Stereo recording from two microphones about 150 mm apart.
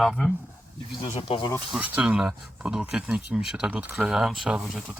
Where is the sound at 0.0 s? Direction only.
Centre (ahead or behind).